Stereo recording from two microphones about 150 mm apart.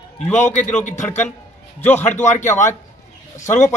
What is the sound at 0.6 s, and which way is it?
Speech, 55° left (ahead or behind).